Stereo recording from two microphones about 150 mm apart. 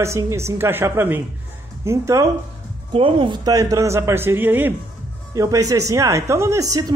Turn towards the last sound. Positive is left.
turn(degrees=-20)  # may be behind; listen again after turning